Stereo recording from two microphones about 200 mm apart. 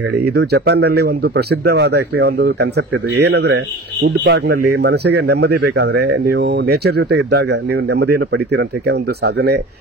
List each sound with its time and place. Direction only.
0.3 s speech: 55° right (ahead or behind)